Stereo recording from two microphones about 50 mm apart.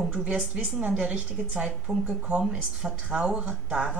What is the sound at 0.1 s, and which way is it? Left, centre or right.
A woman's voice, right.